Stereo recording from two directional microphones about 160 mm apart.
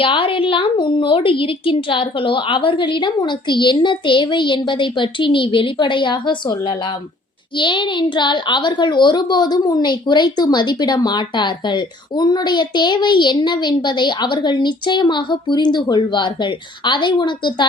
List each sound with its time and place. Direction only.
0.0 s a woman's voice: 35° left (ahead or behind)